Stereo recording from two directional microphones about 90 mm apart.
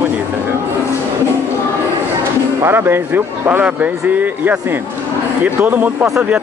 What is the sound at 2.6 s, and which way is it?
Speech, 25° right (ahead or behind).